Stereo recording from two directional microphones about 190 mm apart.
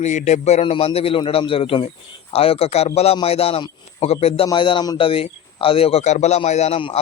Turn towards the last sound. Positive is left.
turn(degrees=30)  # may be behind; listen again after turning